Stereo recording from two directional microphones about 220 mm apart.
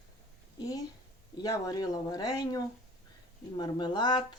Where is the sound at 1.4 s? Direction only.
15° left (ahead or behind).